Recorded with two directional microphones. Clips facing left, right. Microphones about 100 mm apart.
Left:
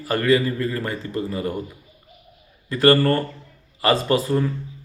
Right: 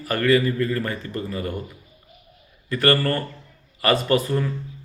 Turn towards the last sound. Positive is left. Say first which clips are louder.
# left 1 dB
turn(degrees=20)  # may be behind; listen again after turning